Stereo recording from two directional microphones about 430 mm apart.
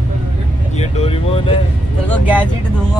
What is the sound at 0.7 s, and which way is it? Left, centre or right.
Vehicle, centre.